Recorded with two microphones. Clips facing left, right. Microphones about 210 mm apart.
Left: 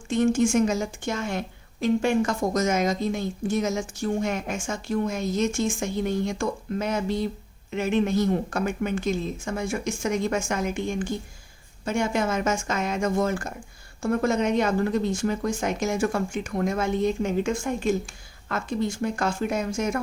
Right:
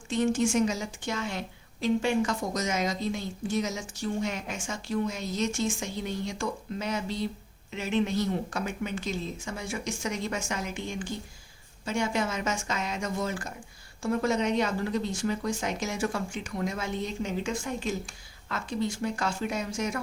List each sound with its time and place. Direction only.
0.1 s a woman's voice: 50° left (ahead or behind)